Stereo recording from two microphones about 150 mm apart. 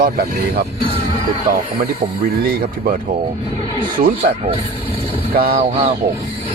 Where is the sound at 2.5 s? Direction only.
70° right (ahead or behind).